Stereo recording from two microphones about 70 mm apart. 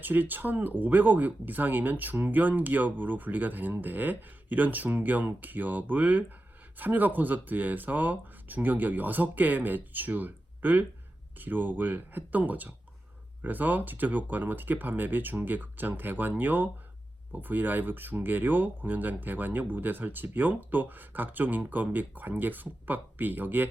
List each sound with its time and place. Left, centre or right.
0.0 s speech: right